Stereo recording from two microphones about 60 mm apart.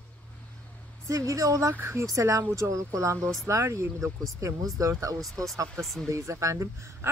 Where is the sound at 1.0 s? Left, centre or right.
Right.